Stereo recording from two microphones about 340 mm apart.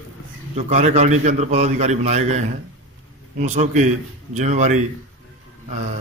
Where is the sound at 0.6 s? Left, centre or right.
Centre.